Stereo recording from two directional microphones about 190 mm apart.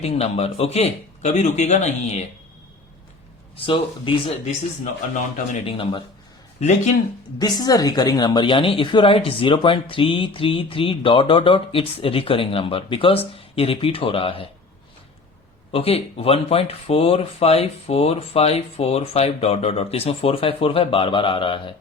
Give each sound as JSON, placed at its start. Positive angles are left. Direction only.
{"t": 0.0, "sound": "speech", "side_deg": 35}
{"t": 3.5, "sound": "a woman's voice", "side_deg": 30}
{"t": 5.6, "sound": "a woman's voice", "side_deg": 25}
{"t": 7.3, "sound": "a woman's voice", "side_deg": 20}
{"t": 15.7, "sound": "speech", "side_deg": 30}